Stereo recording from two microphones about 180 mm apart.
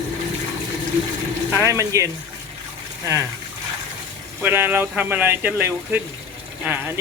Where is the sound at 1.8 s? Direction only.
15° right (ahead or behind).